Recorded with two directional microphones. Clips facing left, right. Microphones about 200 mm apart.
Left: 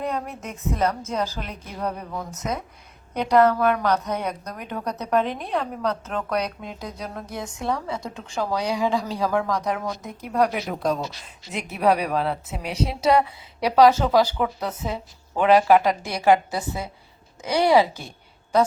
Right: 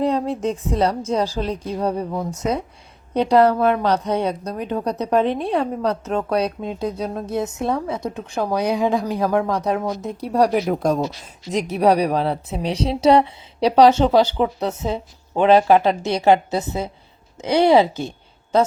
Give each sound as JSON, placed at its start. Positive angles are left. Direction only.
{"t": 0.0, "sound": "a woman's voice", "side_deg": -30}
{"t": 10.7, "sound": "a woman's voice", "side_deg": -45}